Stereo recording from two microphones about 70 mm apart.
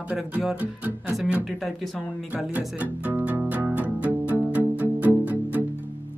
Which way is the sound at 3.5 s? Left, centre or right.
Right.